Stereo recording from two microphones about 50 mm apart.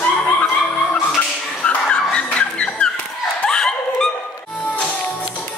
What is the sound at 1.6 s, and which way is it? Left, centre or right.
Vehicle, left.